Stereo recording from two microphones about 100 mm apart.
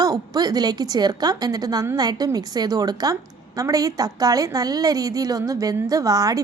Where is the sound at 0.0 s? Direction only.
40° right (ahead or behind).